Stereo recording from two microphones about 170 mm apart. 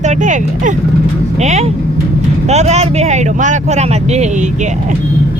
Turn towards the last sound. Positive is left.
turn(degrees=-40)  # may be behind; listen again after turning